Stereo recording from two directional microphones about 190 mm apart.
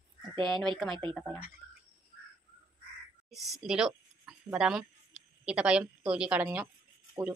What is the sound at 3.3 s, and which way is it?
A woman's voice, centre (ahead or behind).